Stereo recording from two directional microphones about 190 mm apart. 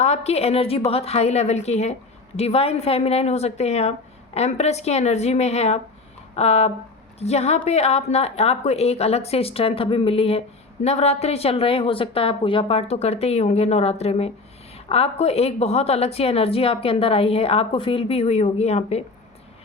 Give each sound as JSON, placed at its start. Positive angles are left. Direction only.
{"t": 0.0, "sound": "a woman's voice", "side_deg": 35}